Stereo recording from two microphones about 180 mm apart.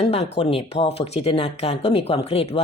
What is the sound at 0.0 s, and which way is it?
Speech, 35° left (ahead or behind).